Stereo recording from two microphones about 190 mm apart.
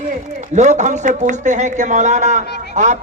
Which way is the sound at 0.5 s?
40° right (ahead or behind).